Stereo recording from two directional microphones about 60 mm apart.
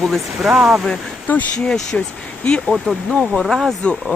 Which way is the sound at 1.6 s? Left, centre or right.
Centre.